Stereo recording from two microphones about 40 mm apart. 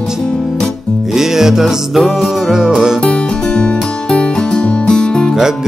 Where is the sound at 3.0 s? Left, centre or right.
Left.